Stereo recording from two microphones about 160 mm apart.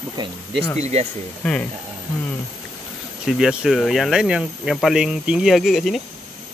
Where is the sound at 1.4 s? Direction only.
10° left (ahead or behind).